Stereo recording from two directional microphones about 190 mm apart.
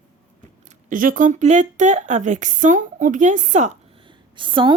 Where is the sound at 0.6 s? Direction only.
45° right (ahead or behind).